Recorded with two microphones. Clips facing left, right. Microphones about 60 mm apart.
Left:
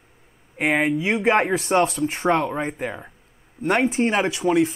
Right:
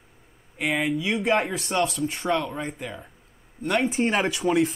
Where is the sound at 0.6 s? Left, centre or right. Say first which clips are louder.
Left 4 dB; left.